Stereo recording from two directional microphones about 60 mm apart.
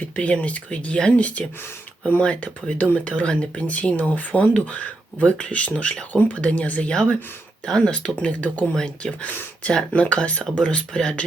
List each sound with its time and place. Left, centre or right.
0.2 s speech: left
8.7 s speech: centre